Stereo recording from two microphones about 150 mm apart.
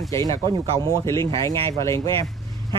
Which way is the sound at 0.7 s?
20° left (ahead or behind).